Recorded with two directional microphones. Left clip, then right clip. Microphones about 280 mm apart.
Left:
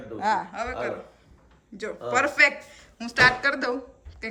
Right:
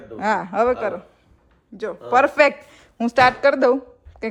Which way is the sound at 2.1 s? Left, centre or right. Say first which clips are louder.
Right 5 dB; centre.